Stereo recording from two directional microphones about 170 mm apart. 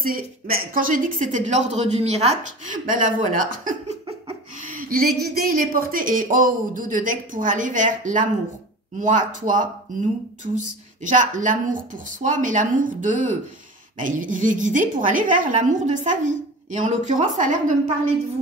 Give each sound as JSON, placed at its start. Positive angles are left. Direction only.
{"t": 0.0, "sound": "speech", "side_deg": -60}
{"t": 11.1, "sound": "speech", "side_deg": -50}